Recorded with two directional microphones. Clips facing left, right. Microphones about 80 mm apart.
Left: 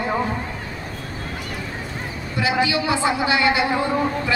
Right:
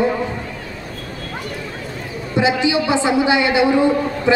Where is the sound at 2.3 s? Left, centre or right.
Right.